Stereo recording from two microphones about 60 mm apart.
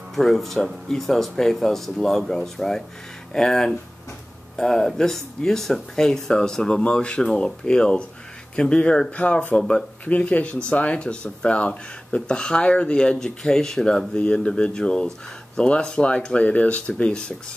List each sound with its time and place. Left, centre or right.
0.1 s speech: centre; by 9.6 s left
9.6 s speech: centre
10.0 s speech: left